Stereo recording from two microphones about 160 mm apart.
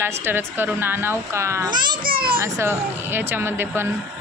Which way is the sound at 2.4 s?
15° right (ahead or behind).